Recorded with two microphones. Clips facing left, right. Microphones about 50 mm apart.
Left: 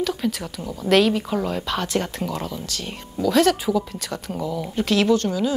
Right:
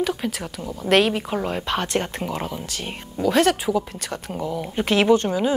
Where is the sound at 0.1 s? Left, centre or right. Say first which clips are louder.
Left 1 dB; centre.